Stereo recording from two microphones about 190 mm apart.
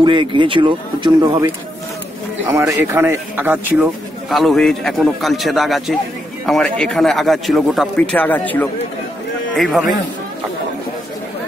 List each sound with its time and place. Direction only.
0.0 s speech: 25° right (ahead or behind)
2.5 s a man's voice: 15° right (ahead or behind); by 9.8 s centre (ahead or behind)